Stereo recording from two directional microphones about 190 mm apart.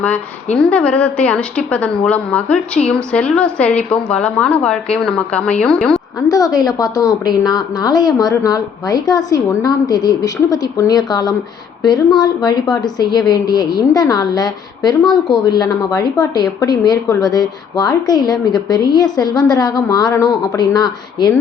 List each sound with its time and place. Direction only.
0.6 s a woman's voice: 5° left (ahead or behind)
6.2 s a woman's voice: 20° left (ahead or behind)